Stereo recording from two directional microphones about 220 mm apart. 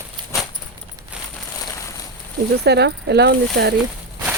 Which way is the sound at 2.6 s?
50° right (ahead or behind).